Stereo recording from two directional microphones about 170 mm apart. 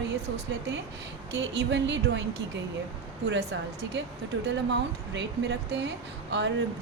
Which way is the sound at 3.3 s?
85° right.